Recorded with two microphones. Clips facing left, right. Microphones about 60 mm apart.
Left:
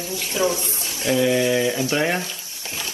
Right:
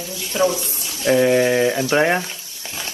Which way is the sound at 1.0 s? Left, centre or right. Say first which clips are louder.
Right 4 dB; right.